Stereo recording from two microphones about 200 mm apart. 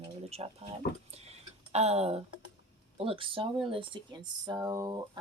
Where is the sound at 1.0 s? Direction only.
30° right (ahead or behind).